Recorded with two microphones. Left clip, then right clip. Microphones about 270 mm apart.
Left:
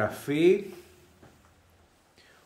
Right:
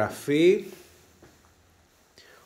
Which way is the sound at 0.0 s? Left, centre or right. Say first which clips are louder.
Right 3 dB; centre.